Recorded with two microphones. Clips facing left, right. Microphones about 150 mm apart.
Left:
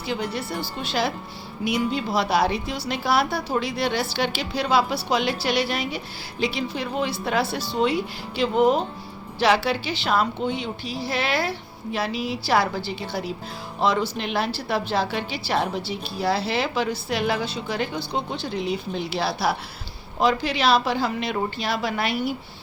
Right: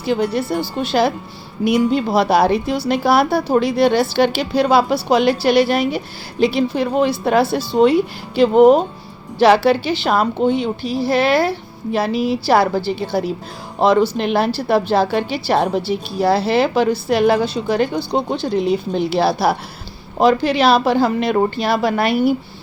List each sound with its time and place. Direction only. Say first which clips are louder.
0.1 s a woman's voice: right 10 dB; 50° right (ahead or behind)
1.6 s a woman's voice: right 9 dB; 55° right (ahead or behind)